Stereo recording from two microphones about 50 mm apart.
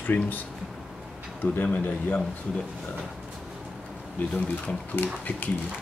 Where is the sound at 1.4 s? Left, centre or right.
Left.